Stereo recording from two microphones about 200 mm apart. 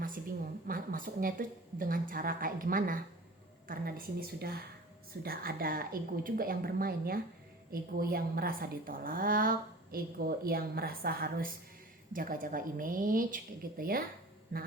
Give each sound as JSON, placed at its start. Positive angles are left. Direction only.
{"t": 0.7, "sound": "a woman's voice", "side_deg": -45}